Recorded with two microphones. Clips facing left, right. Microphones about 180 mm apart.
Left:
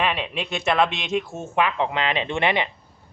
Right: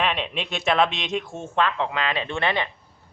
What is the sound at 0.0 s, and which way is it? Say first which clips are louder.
Speech: left 1 dB; centre (ahead or behind).